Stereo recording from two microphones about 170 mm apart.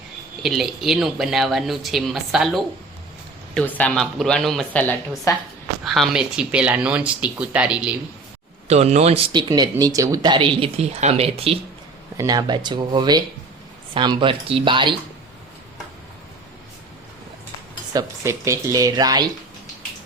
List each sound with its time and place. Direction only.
0.4 s a woman's voice: centre (ahead or behind)
3.5 s a woman's voice: 10° left (ahead or behind)
5.8 s speech: centre (ahead or behind)
8.6 s speech: 40° right (ahead or behind)
9.3 s speech: 25° right (ahead or behind)
12.1 s speech: 20° right (ahead or behind)
17.9 s speech: 15° right (ahead or behind)